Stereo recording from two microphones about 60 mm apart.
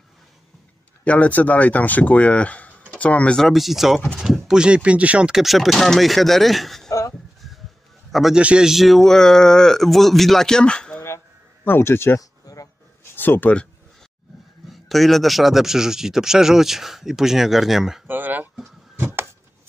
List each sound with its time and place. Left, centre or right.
1.0 s speech: left
3.3 s speech: centre; by 5.3 s right
5.3 s speech: centre
6.9 s a sound: left
8.1 s a man's voice: centre
8.4 s a man's voice: right
8.6 s speech: centre
11.6 s speech: left
12.2 s a sound: left
13.1 s a sound: left
14.7 s speech: centre
18.0 s a sound: right